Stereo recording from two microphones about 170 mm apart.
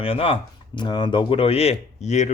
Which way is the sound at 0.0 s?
35° left (ahead or behind).